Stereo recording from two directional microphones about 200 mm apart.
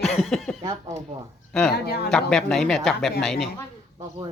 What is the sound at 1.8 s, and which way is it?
Speech, 50° left (ahead or behind).